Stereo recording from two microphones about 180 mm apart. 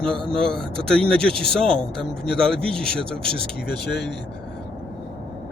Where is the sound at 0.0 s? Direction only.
5° left (ahead or behind).